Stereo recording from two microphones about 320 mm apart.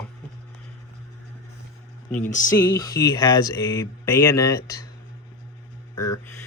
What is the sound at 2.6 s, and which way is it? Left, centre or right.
Speech, centre.